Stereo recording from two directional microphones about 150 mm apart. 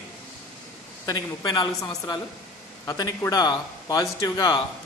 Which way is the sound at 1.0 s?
25° left (ahead or behind).